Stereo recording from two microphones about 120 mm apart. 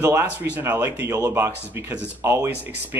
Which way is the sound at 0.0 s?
20° right (ahead or behind).